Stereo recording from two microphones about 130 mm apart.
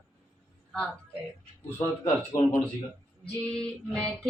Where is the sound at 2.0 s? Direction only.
65° left (ahead or behind).